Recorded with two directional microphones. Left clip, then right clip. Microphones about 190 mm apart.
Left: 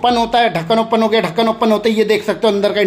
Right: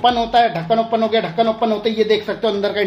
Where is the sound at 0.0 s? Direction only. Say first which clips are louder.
Left 1 dB; 25° left (ahead or behind).